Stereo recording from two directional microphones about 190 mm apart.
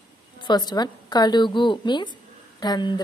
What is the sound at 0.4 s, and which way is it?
A woman's voice, 20° left (ahead or behind).